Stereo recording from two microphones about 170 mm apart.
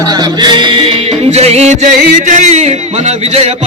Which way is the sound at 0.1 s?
25° right (ahead or behind).